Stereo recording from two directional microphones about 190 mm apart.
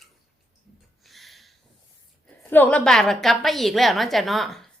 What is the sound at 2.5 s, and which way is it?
A woman's voice, 10° left (ahead or behind).